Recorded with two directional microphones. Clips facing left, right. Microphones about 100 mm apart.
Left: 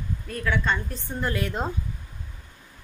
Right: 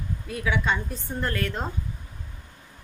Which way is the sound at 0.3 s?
5° right (ahead or behind).